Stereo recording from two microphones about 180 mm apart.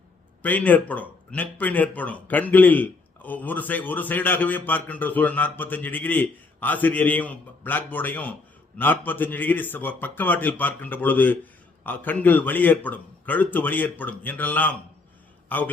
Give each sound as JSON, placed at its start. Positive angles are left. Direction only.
{"t": 0.4, "sound": "a man's voice", "side_deg": 10}